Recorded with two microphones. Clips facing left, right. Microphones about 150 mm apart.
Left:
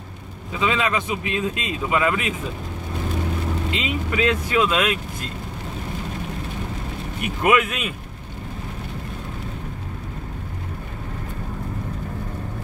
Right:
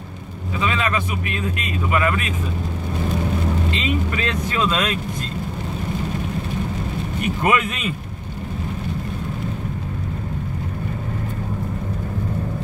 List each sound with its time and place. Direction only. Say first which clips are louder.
0.6 s speech: even; 15° left (ahead or behind)
3.7 s speech: right 1 dB; 10° left (ahead or behind)
7.2 s speech: left 1 dB; 5° left (ahead or behind)